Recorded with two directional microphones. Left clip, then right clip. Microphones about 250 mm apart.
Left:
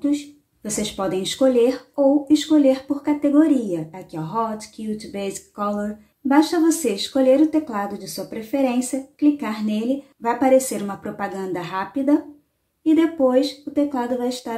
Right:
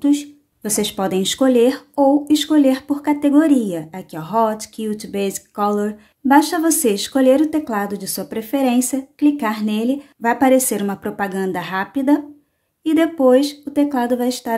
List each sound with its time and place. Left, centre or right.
0.0 s speech: right